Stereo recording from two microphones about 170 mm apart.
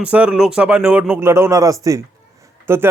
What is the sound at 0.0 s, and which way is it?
A man's voice, 5° right (ahead or behind).